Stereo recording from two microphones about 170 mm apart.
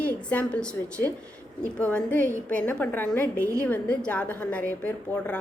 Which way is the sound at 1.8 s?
5° left (ahead or behind).